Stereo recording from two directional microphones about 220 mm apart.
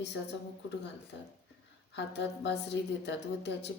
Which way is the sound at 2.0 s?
50° left (ahead or behind).